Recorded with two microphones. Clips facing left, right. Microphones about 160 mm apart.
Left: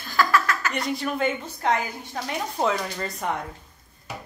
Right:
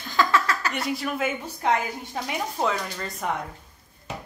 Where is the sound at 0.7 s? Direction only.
Centre (ahead or behind).